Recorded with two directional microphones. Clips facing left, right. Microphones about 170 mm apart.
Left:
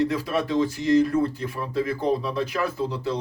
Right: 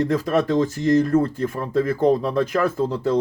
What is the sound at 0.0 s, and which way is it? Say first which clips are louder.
Speech: right 4 dB; 45° right (ahead or behind).